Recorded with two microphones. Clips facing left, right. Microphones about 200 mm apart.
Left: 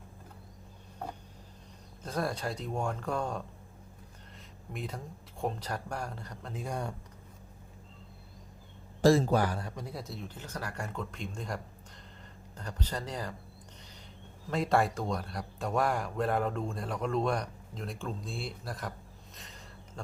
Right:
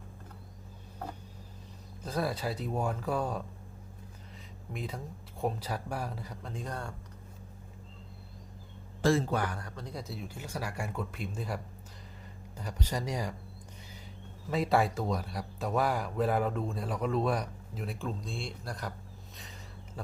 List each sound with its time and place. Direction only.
2.0 s a man's voice: centre (ahead or behind)
4.7 s a man's voice: centre (ahead or behind)
9.0 s a man's voice: 40° left (ahead or behind)
9.7 s speech: 5° left (ahead or behind); by 13.3 s 10° right (ahead or behind)
14.4 s a man's voice: centre (ahead or behind)